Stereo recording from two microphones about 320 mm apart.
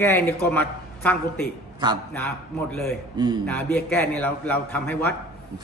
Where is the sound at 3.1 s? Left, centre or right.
Centre.